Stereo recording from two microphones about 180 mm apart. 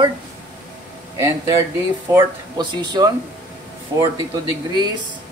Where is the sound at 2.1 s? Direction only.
25° right (ahead or behind).